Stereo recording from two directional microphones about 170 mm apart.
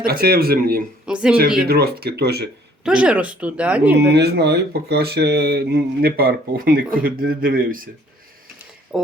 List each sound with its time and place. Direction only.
0.0 s speech: 65° right (ahead or behind)
1.0 s speech: 5° right (ahead or behind)
1.6 s speech: 65° right (ahead or behind)
2.8 s speech: 5° right (ahead or behind)
4.1 s speech: 75° right (ahead or behind); by 7.9 s 55° right (ahead or behind)